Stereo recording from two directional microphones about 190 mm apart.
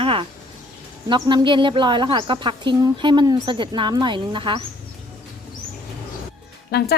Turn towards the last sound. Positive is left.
turn(degrees=55)  # may be behind; listen again after turning